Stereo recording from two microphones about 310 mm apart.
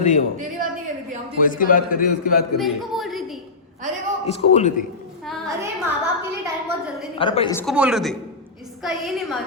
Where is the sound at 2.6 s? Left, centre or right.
Centre.